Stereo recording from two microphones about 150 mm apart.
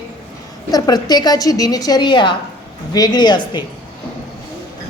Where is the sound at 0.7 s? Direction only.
25° left (ahead or behind).